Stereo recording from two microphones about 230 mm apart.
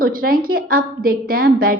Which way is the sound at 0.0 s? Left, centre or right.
Right.